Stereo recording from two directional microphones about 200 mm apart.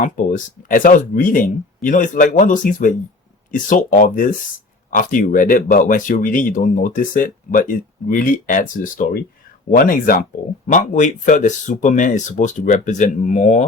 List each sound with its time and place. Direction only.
0.0 s speech: 40° left (ahead or behind)